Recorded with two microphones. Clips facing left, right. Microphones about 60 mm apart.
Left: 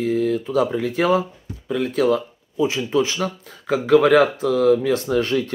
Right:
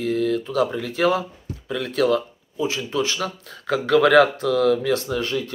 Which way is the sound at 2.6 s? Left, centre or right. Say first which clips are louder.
Left 4 dB; left.